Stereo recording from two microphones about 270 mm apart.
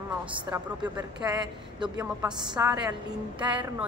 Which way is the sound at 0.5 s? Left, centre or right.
Centre.